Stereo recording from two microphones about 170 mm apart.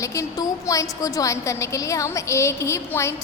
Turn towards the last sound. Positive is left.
turn(degrees=15)  # may be behind; listen again after turning